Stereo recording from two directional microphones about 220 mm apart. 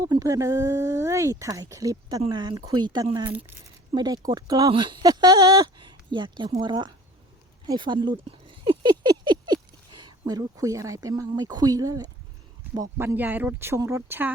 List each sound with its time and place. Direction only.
0.0 s speech: 15° right (ahead or behind)